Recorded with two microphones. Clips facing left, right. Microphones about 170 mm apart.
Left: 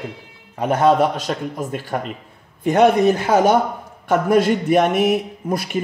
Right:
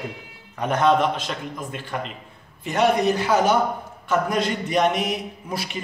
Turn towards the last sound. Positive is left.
turn(degrees=50)  # may be behind; listen again after turning